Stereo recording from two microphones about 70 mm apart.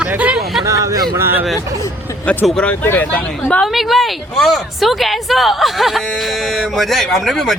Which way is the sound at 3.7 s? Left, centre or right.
Centre.